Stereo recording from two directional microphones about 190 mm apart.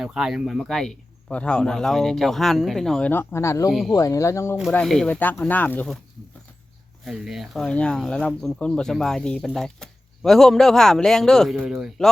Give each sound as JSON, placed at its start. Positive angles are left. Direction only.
{"t": 0.0, "sound": "speech", "side_deg": 0}
{"t": 3.7, "sound": "speech", "side_deg": 0}
{"t": 3.9, "sound": "speech", "side_deg": 15}
{"t": 4.7, "sound": "speech", "side_deg": 5}
{"t": 7.0, "sound": "speech", "side_deg": -5}